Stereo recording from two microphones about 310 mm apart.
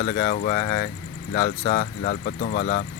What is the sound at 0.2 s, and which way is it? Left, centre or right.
Speech, left.